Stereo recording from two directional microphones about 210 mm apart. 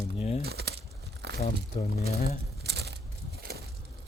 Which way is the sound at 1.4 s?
30° left (ahead or behind).